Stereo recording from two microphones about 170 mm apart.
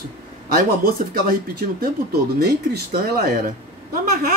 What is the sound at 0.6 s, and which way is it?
A man's voice, 55° right (ahead or behind).